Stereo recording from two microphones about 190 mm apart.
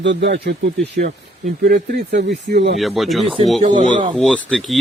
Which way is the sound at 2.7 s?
Centre (ahead or behind).